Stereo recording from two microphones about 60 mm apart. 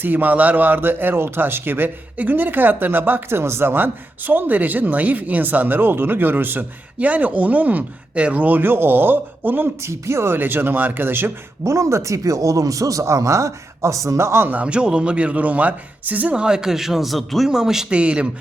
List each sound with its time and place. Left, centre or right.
0.0 s a man's voice: right
9.8 s speech: right
10.3 s a man's voice: right
11.6 s a man's voice: right
14.5 s speech: right
16.3 s a man's voice: centre
17.9 s speech: centre